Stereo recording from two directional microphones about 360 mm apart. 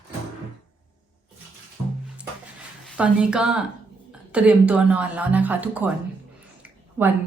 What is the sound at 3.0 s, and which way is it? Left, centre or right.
A woman's voice, centre.